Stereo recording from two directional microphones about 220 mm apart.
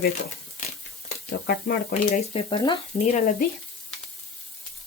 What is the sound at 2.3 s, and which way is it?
Frying, 20° left (ahead or behind).